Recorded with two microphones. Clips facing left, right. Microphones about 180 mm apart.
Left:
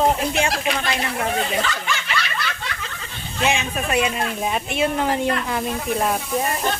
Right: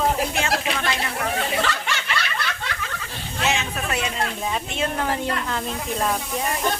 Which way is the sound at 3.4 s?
15° left (ahead or behind).